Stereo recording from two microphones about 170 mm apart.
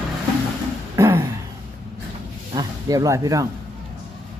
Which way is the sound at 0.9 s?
15° right (ahead or behind).